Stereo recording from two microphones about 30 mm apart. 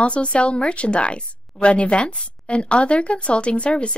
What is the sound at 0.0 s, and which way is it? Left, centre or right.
A woman's voice, left.